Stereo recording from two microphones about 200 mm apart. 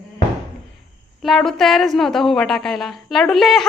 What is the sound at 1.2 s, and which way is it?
A woman's voice, centre (ahead or behind).